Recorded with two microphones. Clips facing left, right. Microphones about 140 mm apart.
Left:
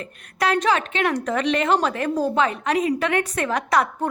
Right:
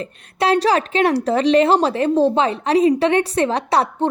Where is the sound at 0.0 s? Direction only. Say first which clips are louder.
Right 4 dB; 30° right (ahead or behind).